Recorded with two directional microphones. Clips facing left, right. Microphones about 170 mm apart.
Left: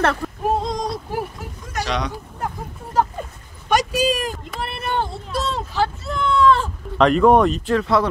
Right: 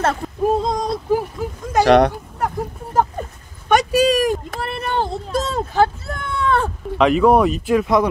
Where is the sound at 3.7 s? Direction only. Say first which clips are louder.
Right 4 dB; 60° right (ahead or behind).